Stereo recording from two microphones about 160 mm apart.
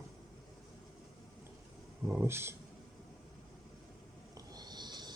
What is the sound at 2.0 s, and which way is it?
Speech, 15° right (ahead or behind).